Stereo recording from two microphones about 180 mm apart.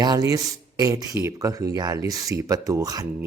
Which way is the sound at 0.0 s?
20° right (ahead or behind).